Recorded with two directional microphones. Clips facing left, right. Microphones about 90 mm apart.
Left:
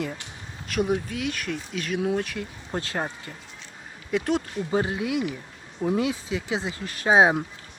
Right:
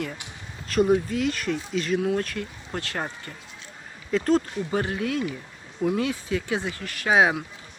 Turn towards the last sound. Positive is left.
turn(degrees=25)  # may be behind; listen again after turning